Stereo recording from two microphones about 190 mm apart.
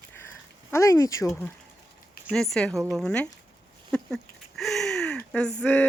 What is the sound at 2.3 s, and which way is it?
Speech, centre (ahead or behind).